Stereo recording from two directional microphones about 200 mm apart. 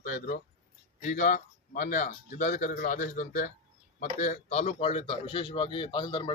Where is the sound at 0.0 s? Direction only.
40° left (ahead or behind).